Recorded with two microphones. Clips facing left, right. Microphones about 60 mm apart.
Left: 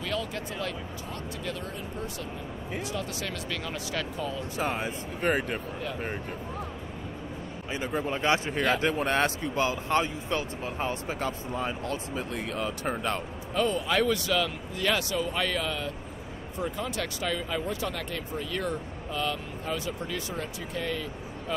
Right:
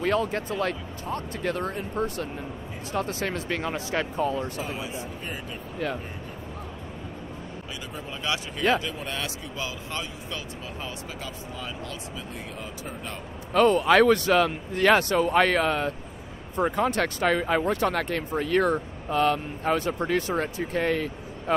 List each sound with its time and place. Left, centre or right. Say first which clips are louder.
0.0 s speech: right 7 dB; right
4.6 s speech: left 2 dB; left
8.2 s speech: left 3 dB; left
8.7 s speech: left 4 dB; left
12.5 s speech: left 6 dB; left
13.5 s speech: right 8 dB; right